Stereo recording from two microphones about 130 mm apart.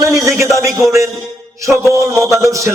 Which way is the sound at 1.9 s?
25° right (ahead or behind).